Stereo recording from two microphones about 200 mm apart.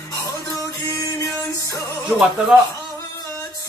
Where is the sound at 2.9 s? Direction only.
20° left (ahead or behind).